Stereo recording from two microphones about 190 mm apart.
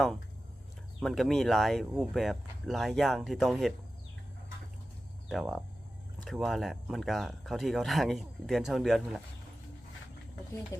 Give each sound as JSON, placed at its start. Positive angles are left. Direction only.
{"t": 1.0, "sound": "speech", "side_deg": 0}
{"t": 5.3, "sound": "speech", "side_deg": 0}